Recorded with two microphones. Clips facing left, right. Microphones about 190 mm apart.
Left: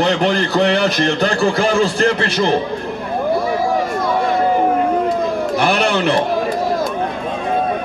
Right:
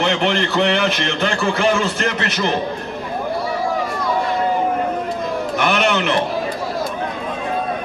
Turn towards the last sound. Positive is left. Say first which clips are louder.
# left 2 dB
turn(degrees=35)  # may be behind; listen again after turning